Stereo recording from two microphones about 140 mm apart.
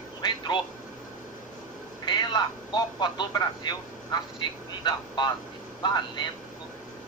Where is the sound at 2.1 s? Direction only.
30° left (ahead or behind).